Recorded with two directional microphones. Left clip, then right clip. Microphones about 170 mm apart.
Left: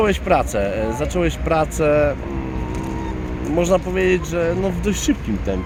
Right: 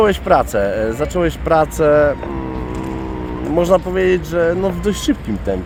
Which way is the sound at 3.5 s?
20° right (ahead or behind).